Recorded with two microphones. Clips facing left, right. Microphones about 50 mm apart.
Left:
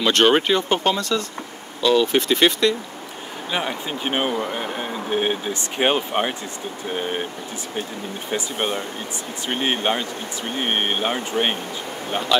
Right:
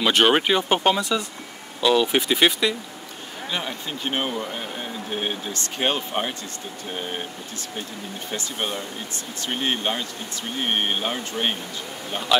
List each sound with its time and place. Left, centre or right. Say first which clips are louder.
0.0 s speech: left 2 dB; centre
3.5 s speech: left 5 dB; centre
8.3 s speech: left 5 dB; centre
12.3 s speech: even; centre